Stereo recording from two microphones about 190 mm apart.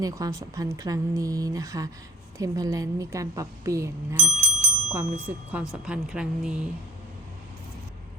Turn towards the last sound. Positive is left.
turn(degrees=-5)  # may be behind; listen again after turning